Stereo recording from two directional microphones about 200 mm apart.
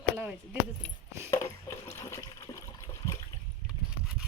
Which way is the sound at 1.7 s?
15° left (ahead or behind).